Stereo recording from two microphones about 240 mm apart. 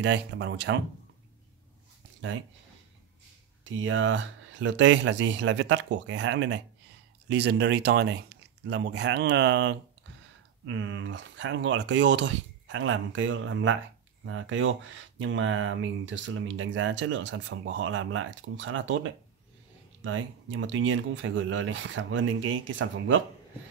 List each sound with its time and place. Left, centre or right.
0.0 s speech: right
3.6 s speech: right